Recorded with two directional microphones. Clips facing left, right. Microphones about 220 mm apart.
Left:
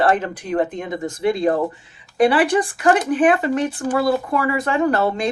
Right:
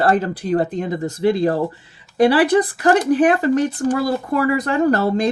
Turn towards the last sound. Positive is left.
turn(degrees=-35)  # may be behind; listen again after turning